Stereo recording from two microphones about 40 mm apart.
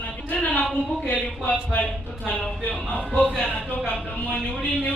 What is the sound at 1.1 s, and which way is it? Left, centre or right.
Speech, left.